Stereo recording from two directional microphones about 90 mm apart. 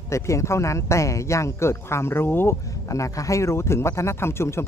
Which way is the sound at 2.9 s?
35° left (ahead or behind).